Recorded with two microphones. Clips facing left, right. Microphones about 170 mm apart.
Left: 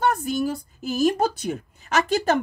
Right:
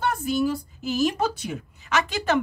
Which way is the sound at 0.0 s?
45° left (ahead or behind).